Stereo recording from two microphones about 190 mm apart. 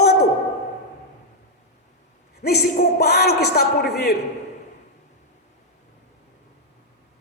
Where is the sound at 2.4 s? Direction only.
55° left (ahead or behind).